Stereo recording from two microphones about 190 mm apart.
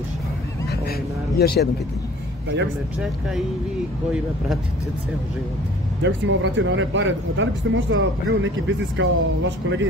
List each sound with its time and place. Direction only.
1.4 s speech: 55° left (ahead or behind)
6.0 s speech: 75° right (ahead or behind)